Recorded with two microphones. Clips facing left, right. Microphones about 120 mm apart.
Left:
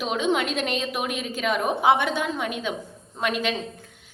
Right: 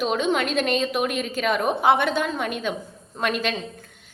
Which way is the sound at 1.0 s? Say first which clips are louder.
Right 3 dB; 55° right (ahead or behind).